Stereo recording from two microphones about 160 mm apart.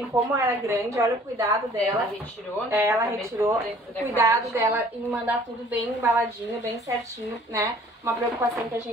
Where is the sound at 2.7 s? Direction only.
20° right (ahead or behind).